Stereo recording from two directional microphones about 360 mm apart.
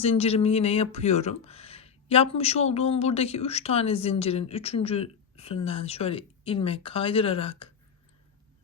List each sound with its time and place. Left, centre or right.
0.0 s speech: centre